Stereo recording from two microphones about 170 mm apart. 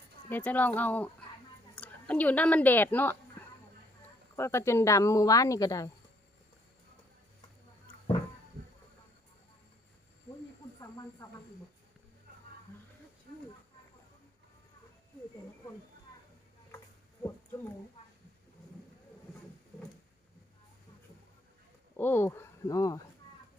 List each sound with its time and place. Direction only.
0.3 s a woman's voice: 10° left (ahead or behind)
4.4 s a woman's voice: 15° left (ahead or behind)
10.8 s speech: 20° left (ahead or behind)
13.3 s a sound: 65° right (ahead or behind)
21.9 s speech: 10° left (ahead or behind)